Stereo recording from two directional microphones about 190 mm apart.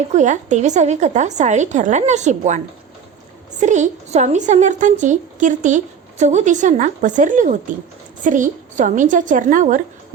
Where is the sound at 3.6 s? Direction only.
40° right (ahead or behind).